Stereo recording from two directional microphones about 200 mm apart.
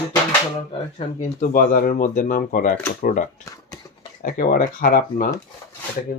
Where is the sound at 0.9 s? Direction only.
40° left (ahead or behind).